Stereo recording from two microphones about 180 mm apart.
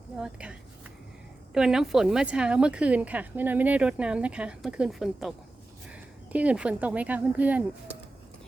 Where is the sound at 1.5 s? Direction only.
5° right (ahead or behind).